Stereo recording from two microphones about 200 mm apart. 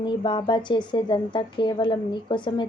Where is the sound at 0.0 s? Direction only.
25° left (ahead or behind).